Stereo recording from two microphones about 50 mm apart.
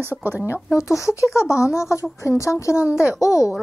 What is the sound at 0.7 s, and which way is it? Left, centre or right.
A woman's voice, left.